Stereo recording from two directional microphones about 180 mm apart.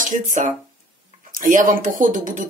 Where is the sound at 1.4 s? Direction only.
50° right (ahead or behind).